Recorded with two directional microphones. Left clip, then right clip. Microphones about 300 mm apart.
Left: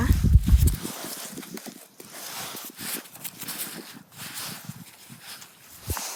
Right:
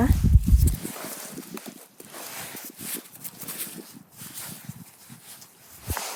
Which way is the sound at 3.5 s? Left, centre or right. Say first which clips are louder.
Left 1 dB; centre.